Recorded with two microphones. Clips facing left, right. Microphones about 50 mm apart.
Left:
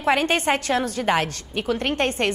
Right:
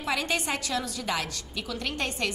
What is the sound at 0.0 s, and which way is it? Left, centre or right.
A woman's voice, left.